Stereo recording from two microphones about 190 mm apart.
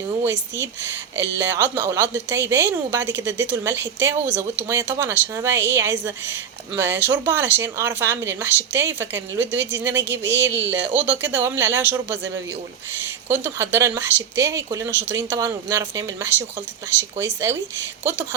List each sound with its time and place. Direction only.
1.1 s speech: 10° right (ahead or behind)
3.0 s speech: 70° right (ahead or behind)
3.2 s speech: 10° right (ahead or behind)
13.2 s speech: 10° right (ahead or behind)
18.0 s speech: 10° right (ahead or behind)